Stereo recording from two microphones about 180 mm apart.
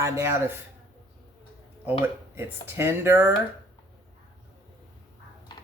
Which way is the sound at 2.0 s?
15° right (ahead or behind).